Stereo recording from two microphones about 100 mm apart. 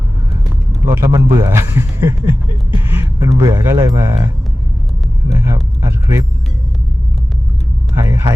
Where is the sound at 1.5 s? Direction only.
25° right (ahead or behind).